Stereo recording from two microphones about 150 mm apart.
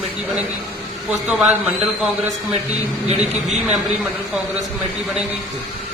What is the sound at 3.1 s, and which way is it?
Speech, 45° right (ahead or behind).